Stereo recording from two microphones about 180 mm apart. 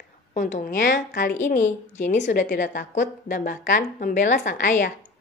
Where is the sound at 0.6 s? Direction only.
50° left (ahead or behind).